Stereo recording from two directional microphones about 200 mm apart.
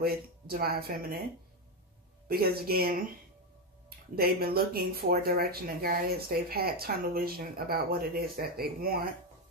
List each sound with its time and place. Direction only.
0.0 s speech: 50° right (ahead or behind)
2.2 s speech: 50° right (ahead or behind)
4.1 s speech: 50° right (ahead or behind)